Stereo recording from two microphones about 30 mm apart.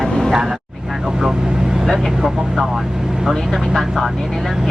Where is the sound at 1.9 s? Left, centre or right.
Centre.